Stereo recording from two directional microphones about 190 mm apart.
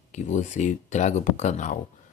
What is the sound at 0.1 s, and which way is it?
Speech, 40° left (ahead or behind).